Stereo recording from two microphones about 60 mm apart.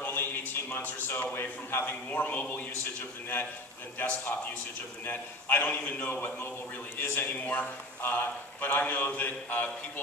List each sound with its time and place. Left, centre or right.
0.0 s a man's voice: left